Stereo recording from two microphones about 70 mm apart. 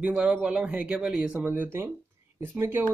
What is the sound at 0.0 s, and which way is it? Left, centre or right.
Speech, centre.